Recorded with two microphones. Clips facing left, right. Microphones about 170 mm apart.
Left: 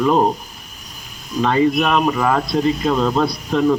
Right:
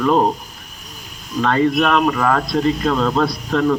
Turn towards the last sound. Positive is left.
turn(degrees=5)  # may be behind; listen again after turning